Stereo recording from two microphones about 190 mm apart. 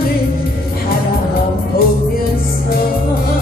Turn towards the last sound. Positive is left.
turn(degrees=50)  # may be behind; listen again after turning